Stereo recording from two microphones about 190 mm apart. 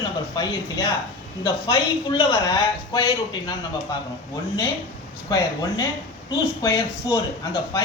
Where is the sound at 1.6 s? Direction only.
20° left (ahead or behind).